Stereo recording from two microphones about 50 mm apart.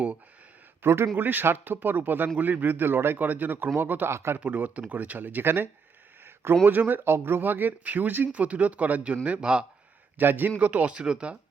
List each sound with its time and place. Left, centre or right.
0.8 s a man's voice: right
4.1 s speech: right
4.4 s speech: right
6.2 s a sound: right
6.7 s speech: right
8.3 s speech: right
10.2 s speech: right
10.9 s speech: centre